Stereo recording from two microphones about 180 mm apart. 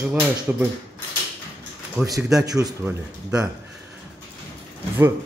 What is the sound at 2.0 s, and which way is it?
A man's voice, 5° right (ahead or behind).